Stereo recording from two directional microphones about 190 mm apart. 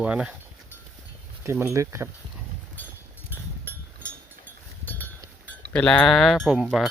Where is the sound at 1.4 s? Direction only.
10° right (ahead or behind).